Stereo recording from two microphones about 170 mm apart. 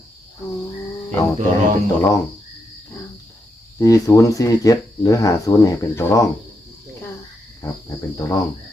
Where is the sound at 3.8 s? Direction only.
20° left (ahead or behind).